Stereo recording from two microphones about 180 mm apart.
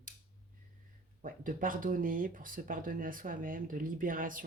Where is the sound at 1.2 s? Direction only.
50° right (ahead or behind).